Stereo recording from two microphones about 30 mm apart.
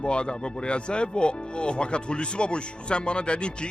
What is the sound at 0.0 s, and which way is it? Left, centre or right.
Speech, left.